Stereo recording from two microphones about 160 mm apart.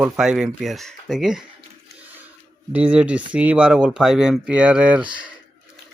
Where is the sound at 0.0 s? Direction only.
5° right (ahead or behind).